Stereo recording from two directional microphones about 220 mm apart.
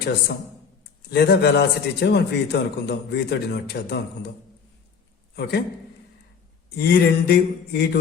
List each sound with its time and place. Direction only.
1.1 s a man's voice: 50° left (ahead or behind)
5.4 s a man's voice: 50° left (ahead or behind)
6.7 s a man's voice: 45° left (ahead or behind)